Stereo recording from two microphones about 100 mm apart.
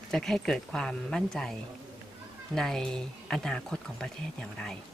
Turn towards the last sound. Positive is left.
turn(degrees=5)  # may be behind; listen again after turning